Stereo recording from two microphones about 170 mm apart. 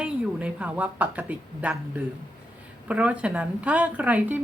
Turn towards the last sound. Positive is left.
turn(degrees=-10)  # may be behind; listen again after turning